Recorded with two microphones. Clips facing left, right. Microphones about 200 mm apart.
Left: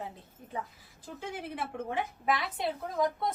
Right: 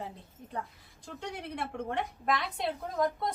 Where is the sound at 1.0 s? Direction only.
5° left (ahead or behind).